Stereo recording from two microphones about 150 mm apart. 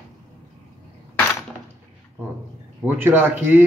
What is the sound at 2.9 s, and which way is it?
Speech, 15° right (ahead or behind).